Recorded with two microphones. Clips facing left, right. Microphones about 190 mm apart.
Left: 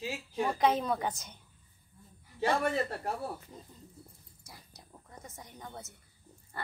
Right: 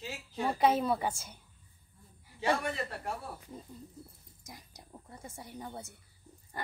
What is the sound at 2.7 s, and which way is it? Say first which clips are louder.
Speech: left 5 dB; 40° left (ahead or behind).